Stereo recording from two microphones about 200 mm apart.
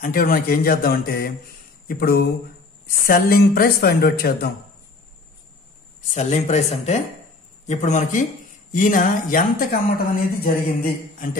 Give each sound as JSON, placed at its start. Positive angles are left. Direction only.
{"t": 0.0, "sound": "speech", "side_deg": 45}
{"t": 6.0, "sound": "speech", "side_deg": 35}